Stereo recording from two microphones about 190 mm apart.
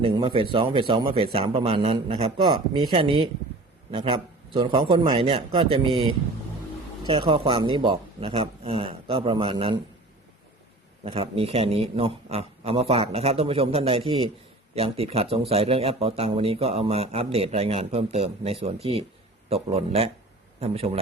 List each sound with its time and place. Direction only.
0.0 s a man's voice: 30° right (ahead or behind)
7.1 s a man's voice: 25° right (ahead or behind)
11.0 s speech: 30° right (ahead or behind)